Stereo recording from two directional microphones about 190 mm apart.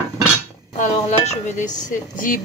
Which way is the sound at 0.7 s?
35° left (ahead or behind).